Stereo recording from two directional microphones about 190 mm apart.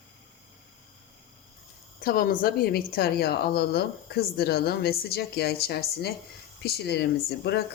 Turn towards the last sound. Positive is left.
turn(degrees=60)  # may be behind; listen again after turning